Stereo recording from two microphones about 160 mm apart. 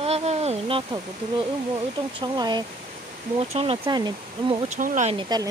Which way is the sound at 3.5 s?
40° right (ahead or behind).